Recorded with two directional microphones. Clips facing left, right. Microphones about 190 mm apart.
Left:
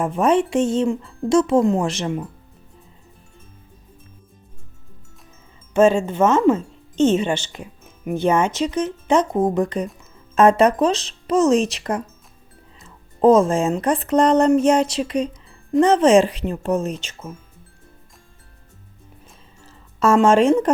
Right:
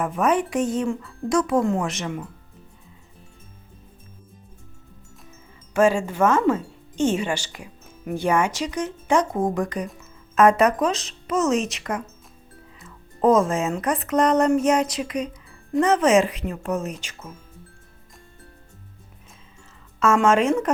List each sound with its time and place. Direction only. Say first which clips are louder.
0.0 s speech: left 4 dB; 30° left (ahead or behind)
5.7 s speech: left 4 dB; 25° left (ahead or behind)
20.0 s speech: left 4 dB; 30° left (ahead or behind)